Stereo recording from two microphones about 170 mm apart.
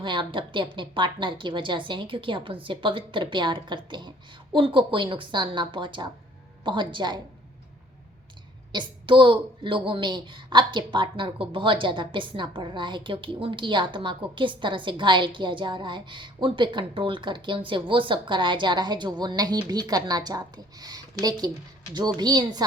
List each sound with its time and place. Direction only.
0.0 s a woman's voice: 30° right (ahead or behind)
8.7 s a woman's voice: 30° right (ahead or behind)